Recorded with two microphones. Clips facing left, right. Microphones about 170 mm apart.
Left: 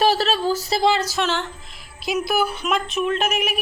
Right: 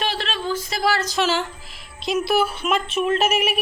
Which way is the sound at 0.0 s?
40° left (ahead or behind).